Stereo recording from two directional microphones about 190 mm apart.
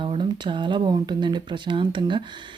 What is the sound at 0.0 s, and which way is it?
Speech, 25° right (ahead or behind).